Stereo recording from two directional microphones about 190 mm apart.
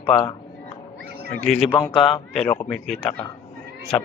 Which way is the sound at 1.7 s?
25° left (ahead or behind).